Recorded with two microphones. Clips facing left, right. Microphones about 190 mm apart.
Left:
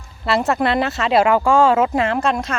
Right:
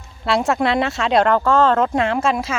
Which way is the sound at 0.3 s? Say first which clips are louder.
Even; centre (ahead or behind).